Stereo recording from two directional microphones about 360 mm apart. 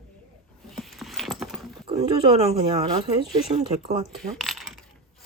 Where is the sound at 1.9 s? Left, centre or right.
Centre.